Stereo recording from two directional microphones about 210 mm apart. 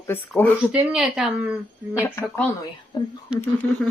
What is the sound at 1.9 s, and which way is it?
Speech, 10° left (ahead or behind).